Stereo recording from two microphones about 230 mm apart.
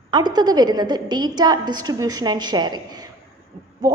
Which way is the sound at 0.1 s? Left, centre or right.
Centre.